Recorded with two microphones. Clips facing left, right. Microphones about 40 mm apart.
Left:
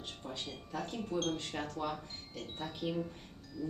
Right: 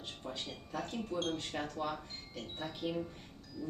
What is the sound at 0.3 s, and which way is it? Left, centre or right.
Speech, centre.